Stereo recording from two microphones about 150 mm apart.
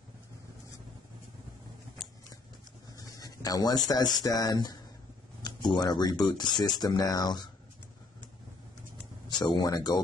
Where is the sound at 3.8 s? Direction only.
25° left (ahead or behind).